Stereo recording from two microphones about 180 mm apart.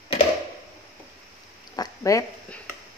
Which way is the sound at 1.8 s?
20° left (ahead or behind).